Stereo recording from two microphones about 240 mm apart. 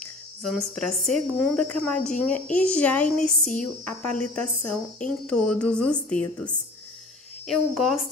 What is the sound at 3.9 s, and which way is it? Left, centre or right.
Speech, left.